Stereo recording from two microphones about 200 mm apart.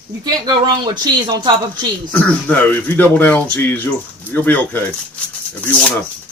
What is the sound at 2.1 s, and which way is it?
Speech, 10° left (ahead or behind).